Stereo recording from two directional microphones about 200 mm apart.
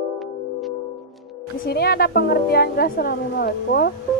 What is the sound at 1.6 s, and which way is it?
A woman's voice, 50° left (ahead or behind).